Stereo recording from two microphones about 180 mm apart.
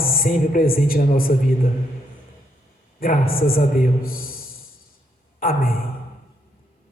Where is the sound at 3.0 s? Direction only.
55° left (ahead or behind).